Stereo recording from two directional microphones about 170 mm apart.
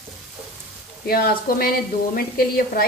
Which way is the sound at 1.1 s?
65° left (ahead or behind).